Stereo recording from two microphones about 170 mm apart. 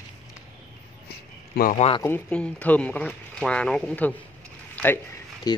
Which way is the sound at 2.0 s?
10° left (ahead or behind).